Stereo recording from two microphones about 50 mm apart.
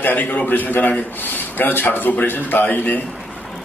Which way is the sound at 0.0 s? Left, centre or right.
Left.